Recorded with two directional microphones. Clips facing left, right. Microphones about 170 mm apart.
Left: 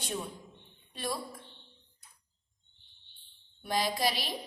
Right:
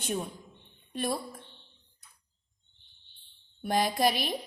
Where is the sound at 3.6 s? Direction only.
55° right (ahead or behind).